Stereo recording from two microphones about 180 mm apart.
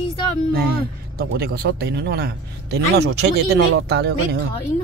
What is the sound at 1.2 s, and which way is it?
A man's voice, 60° right (ahead or behind).